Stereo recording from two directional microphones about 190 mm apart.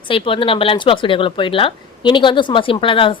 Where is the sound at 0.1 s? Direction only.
30° left (ahead or behind).